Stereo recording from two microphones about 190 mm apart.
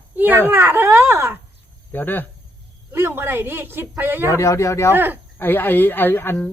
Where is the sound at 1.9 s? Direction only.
10° left (ahead or behind).